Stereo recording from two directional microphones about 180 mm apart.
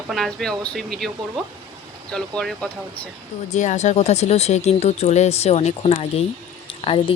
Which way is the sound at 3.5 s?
40° left (ahead or behind).